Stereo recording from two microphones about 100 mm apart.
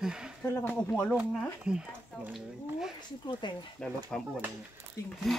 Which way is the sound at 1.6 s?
10° right (ahead or behind).